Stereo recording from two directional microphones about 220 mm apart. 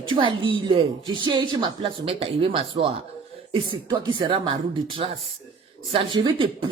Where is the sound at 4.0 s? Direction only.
20° right (ahead or behind).